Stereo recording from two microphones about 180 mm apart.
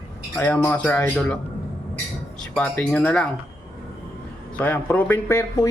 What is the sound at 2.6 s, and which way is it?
Speech, 5° left (ahead or behind).